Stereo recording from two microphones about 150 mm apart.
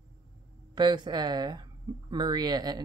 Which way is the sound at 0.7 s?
30° right (ahead or behind).